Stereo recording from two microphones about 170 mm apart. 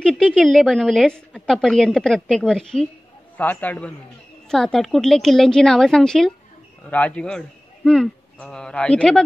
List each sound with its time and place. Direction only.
0.0 s a woman's voice: 5° left (ahead or behind)